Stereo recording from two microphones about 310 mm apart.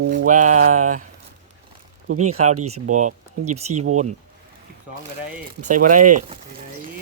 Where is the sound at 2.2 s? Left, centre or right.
Right.